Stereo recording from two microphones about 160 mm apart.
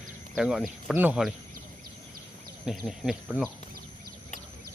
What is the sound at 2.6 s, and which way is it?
Speech, centre (ahead or behind).